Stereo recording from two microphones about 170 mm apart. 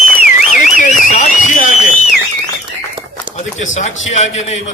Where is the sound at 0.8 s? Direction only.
45° left (ahead or behind).